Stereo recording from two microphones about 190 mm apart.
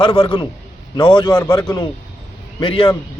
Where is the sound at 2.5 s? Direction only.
25° left (ahead or behind).